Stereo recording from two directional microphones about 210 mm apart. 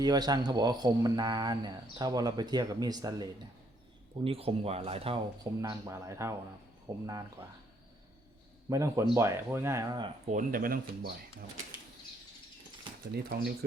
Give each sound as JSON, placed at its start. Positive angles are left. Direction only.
{"t": 0.0, "sound": "speech", "side_deg": -20}
{"t": 8.7, "sound": "speech", "side_deg": -15}
{"t": 10.2, "sound": "speech", "side_deg": -40}
{"t": 13.3, "sound": "speech", "side_deg": -50}